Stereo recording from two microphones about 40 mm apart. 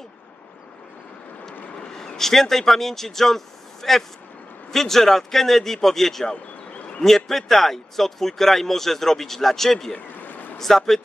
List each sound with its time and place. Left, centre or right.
2.0 s speech: centre
9.9 s stream: left